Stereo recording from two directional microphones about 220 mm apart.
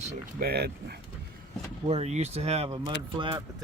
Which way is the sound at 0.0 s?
45° right (ahead or behind).